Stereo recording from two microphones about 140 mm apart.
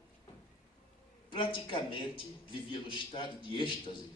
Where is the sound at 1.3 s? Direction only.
35° left (ahead or behind).